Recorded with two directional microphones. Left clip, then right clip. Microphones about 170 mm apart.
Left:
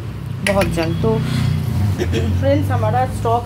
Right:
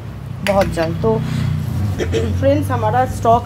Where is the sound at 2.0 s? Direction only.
20° right (ahead or behind).